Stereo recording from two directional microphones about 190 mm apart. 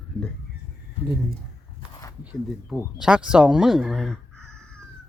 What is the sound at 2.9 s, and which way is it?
Speech, 5° right (ahead or behind).